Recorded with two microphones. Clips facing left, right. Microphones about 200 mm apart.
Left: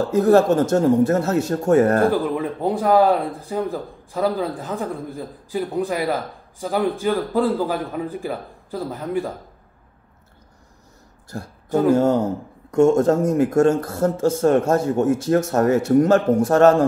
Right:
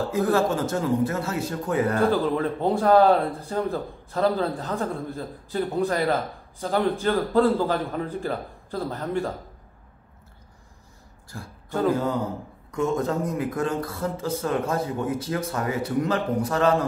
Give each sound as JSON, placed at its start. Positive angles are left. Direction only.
{"t": 0.1, "sound": "speech", "side_deg": 40}
{"t": 2.3, "sound": "a man's voice", "side_deg": 15}
{"t": 12.2, "sound": "speech", "side_deg": 45}